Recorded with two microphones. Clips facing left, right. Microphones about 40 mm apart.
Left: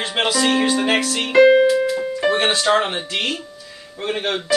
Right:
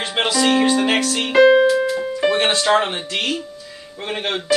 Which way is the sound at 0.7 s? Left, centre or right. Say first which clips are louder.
Right 1 dB; centre.